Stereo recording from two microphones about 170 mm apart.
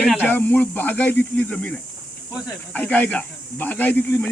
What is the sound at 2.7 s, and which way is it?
Speech, 10° left (ahead or behind).